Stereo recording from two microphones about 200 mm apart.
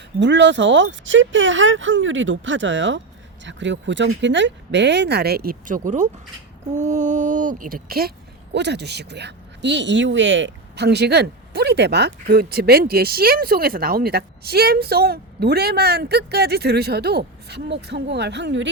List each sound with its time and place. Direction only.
0.2 s speech: 65° right (ahead or behind)